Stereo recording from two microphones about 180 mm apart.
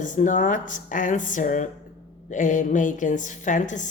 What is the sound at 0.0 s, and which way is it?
A woman's voice, 45° left (ahead or behind).